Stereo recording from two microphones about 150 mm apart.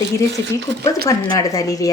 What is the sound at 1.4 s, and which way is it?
Speech, 20° left (ahead or behind).